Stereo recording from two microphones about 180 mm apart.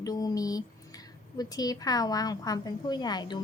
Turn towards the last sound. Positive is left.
turn(degrees=25)  # may be behind; listen again after turning